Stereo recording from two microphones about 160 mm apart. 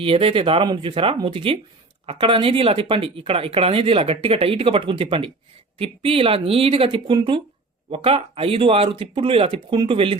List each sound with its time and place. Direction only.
0.0 s speech: 35° right (ahead or behind)